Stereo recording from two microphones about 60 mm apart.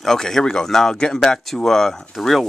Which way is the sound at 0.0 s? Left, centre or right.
Centre.